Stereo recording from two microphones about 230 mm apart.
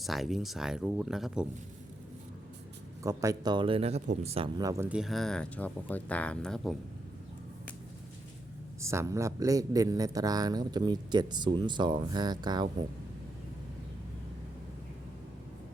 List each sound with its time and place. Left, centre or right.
0.0 s speech: centre
3.0 s speech: centre
8.8 s speech: centre